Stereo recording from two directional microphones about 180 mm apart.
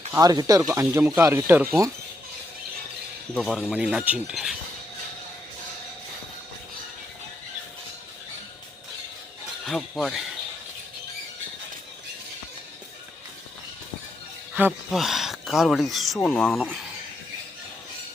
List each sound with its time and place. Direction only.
0.1 s speech: 20° right (ahead or behind)
3.3 s speech: centre (ahead or behind)
9.6 s speech: centre (ahead or behind)
14.8 s speech: centre (ahead or behind)